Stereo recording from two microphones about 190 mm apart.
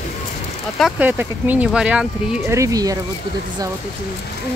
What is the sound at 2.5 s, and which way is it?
Speech, 15° right (ahead or behind).